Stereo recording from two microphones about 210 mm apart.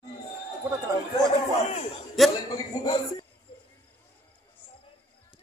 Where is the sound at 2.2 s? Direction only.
Centre (ahead or behind).